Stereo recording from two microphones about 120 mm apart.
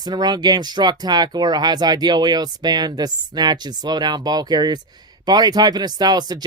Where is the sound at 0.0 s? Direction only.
35° right (ahead or behind).